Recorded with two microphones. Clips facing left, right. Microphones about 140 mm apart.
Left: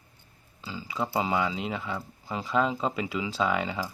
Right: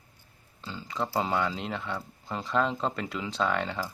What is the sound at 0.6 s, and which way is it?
Speech, 5° left (ahead or behind).